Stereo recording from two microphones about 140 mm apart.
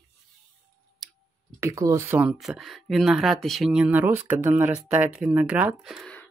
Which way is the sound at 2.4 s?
Centre (ahead or behind).